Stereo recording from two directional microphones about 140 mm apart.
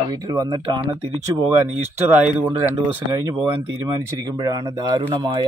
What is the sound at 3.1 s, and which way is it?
A man's voice, 30° right (ahead or behind).